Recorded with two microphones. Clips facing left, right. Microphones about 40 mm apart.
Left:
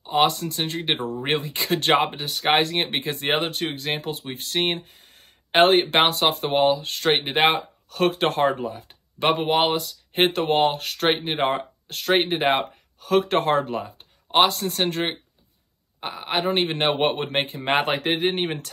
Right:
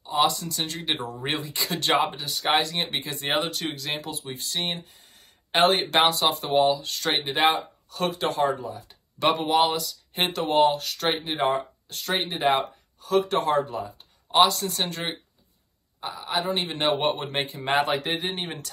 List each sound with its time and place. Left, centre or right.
0.0 s speech: left
9.2 s speech: left